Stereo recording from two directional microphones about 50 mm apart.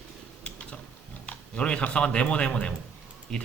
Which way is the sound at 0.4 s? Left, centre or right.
Left.